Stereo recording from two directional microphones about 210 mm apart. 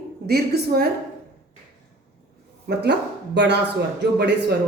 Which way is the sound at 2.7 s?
50° right (ahead or behind).